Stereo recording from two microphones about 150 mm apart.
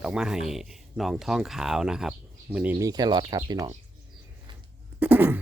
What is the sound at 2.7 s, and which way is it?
Speech, 25° right (ahead or behind).